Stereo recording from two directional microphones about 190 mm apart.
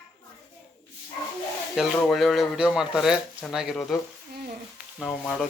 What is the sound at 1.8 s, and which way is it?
Speech, centre (ahead or behind).